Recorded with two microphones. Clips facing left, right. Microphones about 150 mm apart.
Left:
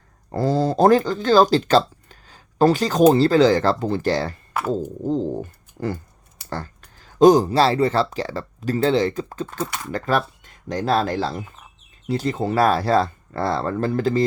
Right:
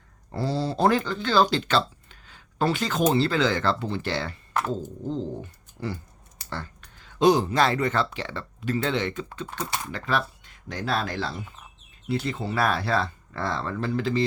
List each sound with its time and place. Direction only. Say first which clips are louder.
0.3 s speech: left 7 dB; 45° left (ahead or behind)
4.6 s speech: left 3 dB; 10° left (ahead or behind)
5.0 s speech: left 7 dB; 40° left (ahead or behind)